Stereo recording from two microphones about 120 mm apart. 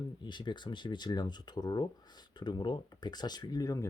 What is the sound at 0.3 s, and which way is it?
Speech, 40° left (ahead or behind).